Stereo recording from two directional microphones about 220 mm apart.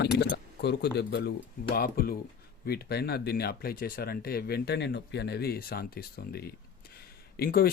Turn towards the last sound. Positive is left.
turn(degrees=45)  # may be behind; listen again after turning